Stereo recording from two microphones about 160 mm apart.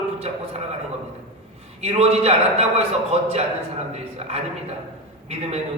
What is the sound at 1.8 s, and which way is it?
A man's voice, 40° right (ahead or behind).